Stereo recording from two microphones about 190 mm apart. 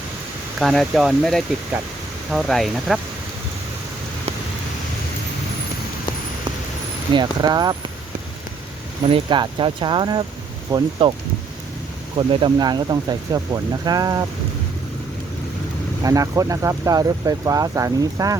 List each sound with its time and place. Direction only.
0.6 s speech: centre (ahead or behind)
7.1 s speech: 20° right (ahead or behind)
9.0 s speech: 25° right (ahead or behind)
12.1 s speech: 25° right (ahead or behind)
16.0 s speech: 15° right (ahead or behind)